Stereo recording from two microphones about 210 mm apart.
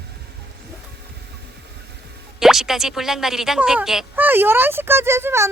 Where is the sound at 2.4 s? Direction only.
Centre (ahead or behind).